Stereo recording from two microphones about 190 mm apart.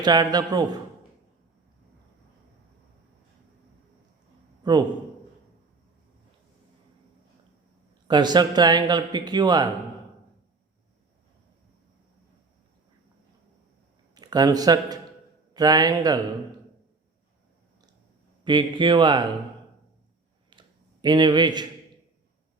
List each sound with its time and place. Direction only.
0.0 s speech: 20° right (ahead or behind)
4.6 s a man's voice: 20° right (ahead or behind)
8.0 s speech: 20° right (ahead or behind)
14.2 s speech: 20° right (ahead or behind)
18.4 s speech: 25° right (ahead or behind)
20.5 s a sound: 25° right (ahead or behind)